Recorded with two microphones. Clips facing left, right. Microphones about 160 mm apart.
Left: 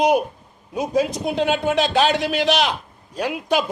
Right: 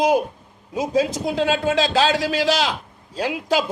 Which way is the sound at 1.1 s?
90° right.